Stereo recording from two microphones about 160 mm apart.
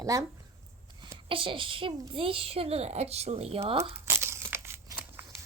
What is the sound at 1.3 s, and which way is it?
A woman's voice, 35° right (ahead or behind).